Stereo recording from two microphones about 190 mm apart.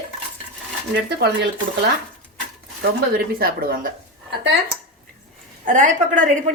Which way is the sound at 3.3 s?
50° right (ahead or behind).